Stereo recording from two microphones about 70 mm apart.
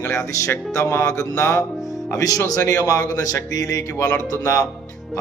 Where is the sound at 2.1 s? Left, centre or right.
Left.